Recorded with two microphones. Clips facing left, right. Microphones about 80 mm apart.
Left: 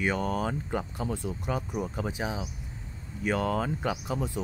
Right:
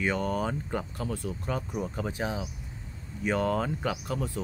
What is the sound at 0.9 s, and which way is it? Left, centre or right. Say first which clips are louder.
Speech: left 1 dB; centre.